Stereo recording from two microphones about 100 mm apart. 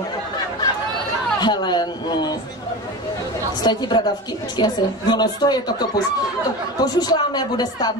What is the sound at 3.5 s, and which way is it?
Speech, 50° left (ahead or behind).